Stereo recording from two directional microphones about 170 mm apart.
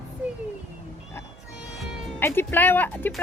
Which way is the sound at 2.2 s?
15° left (ahead or behind).